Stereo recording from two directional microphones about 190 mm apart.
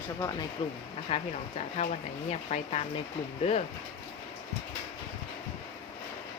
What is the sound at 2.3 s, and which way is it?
Speech, 35° left (ahead or behind).